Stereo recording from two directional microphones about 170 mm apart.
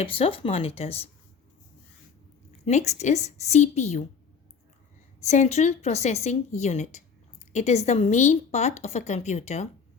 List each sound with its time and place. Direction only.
0.0 s a woman's voice: 35° left (ahead or behind)
2.6 s a woman's voice: 45° left (ahead or behind)
5.2 s a woman's voice: 40° left (ahead or behind)